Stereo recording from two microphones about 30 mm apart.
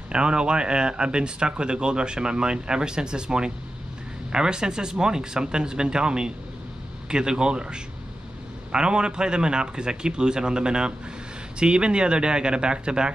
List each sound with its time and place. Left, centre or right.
0.1 s a man's voice: right